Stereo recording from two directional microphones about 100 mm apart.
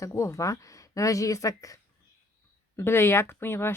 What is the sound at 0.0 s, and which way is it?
Speech, 30° left (ahead or behind).